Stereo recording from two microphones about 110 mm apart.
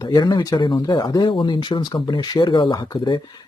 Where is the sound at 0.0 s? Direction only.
40° left (ahead or behind).